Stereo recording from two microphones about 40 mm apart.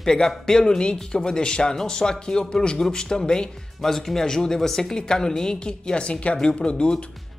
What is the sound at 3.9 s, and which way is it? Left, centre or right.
A woman's voice, centre.